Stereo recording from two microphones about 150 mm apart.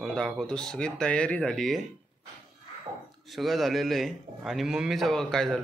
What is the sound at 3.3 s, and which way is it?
A man's voice, centre (ahead or behind).